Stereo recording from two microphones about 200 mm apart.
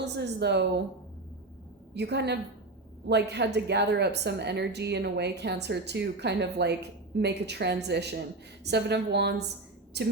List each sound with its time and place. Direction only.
0.0 s a woman's voice: 55° right (ahead or behind)
1.9 s a woman's voice: 55° right (ahead or behind)